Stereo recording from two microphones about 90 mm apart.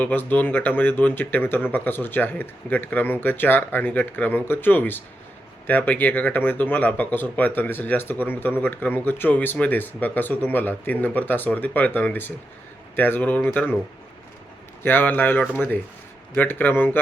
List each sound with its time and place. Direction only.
0.0 s speech: 20° left (ahead or behind)
14.8 s speech: 20° left (ahead or behind)